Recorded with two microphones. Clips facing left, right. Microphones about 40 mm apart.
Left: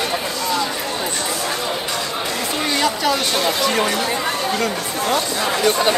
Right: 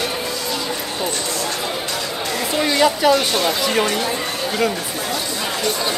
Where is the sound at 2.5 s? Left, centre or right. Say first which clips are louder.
Right 4 dB; centre.